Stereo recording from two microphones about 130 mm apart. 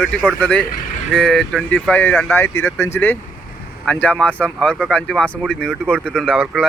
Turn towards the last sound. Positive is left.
turn(degrees=5)  # may be behind; listen again after turning